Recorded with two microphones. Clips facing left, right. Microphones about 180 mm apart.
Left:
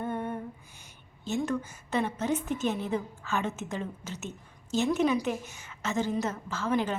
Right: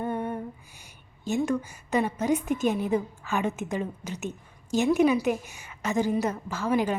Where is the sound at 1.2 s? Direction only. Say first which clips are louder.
Right 4 dB; 10° right (ahead or behind).